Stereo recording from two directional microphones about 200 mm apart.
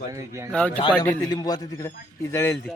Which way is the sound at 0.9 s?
10° left (ahead or behind).